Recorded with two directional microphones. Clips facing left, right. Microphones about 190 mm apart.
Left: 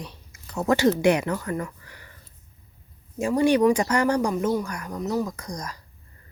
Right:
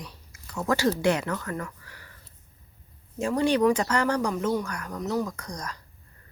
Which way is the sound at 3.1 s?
10° left (ahead or behind).